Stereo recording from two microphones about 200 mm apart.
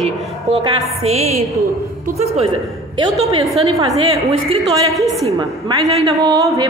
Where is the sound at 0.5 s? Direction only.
30° right (ahead or behind).